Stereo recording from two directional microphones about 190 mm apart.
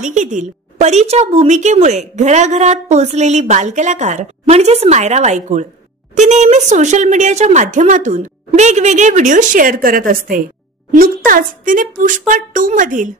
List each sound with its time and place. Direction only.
0.0 s a woman's voice: 40° right (ahead or behind)